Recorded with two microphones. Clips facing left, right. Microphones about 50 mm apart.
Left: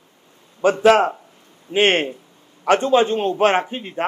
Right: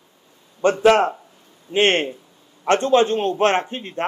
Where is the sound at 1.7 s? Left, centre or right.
Centre.